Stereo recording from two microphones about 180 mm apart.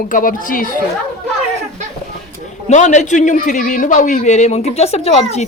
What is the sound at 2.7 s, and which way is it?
A man's voice, 40° left (ahead or behind).